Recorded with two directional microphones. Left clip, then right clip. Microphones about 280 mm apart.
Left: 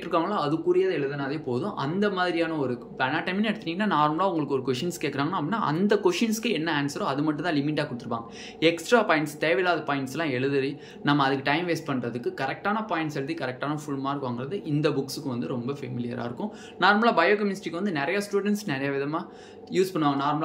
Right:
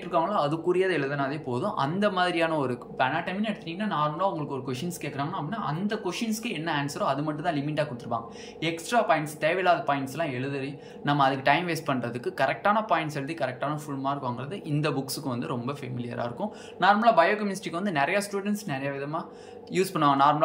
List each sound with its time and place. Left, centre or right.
0.1 s speech: centre
19.7 s a man's voice: centre